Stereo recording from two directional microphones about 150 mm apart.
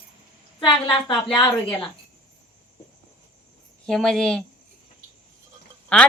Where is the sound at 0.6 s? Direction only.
35° left (ahead or behind).